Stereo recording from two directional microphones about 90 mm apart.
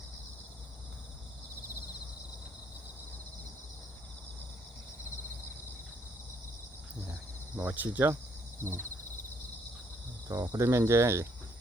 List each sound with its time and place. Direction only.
7.1 s cricket: 15° right (ahead or behind)
8.6 s speech: 30° right (ahead or behind)
10.2 s speech: 40° right (ahead or behind)